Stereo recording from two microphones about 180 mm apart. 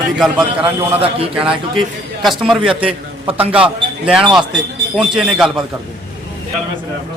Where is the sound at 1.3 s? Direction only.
5° right (ahead or behind).